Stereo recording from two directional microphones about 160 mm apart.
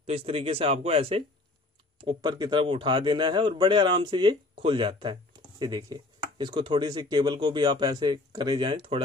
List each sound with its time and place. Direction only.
0.0 s speech: 40° right (ahead or behind)